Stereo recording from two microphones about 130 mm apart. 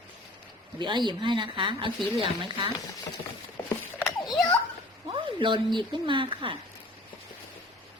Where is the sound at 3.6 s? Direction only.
15° left (ahead or behind).